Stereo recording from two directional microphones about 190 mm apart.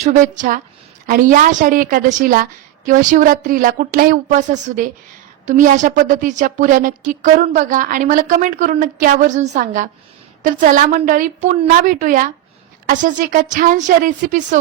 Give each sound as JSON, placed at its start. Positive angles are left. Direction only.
{"t": 0.0, "sound": "a woman's voice", "side_deg": -40}